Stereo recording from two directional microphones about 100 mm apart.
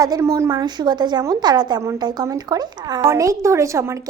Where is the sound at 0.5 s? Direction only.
45° right (ahead or behind).